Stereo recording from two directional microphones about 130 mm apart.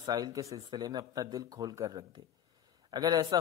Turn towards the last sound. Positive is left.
turn(degrees=-30)  # may be behind; listen again after turning